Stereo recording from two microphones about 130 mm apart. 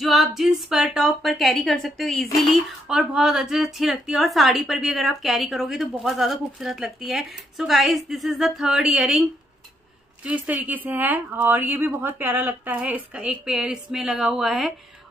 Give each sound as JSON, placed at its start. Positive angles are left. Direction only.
{"t": 0.0, "sound": "speech", "side_deg": 0}
{"t": 10.2, "sound": "a woman's voice", "side_deg": -10}